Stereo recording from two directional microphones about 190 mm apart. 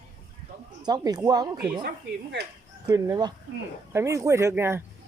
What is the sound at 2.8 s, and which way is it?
Speech, 20° right (ahead or behind).